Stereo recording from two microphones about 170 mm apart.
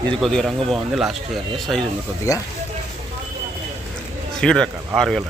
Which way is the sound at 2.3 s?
20° left (ahead or behind).